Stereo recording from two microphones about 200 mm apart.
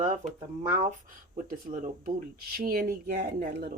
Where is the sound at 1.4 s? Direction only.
40° right (ahead or behind).